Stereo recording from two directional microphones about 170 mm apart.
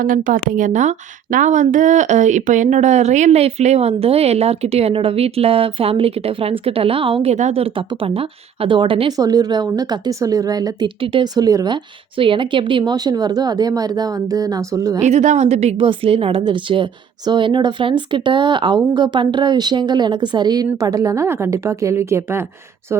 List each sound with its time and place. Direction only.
0.0 s speech: 50° right (ahead or behind); by 15.0 s 20° right (ahead or behind)
15.0 s speech: 45° right (ahead or behind); by 22.4 s 15° right (ahead or behind)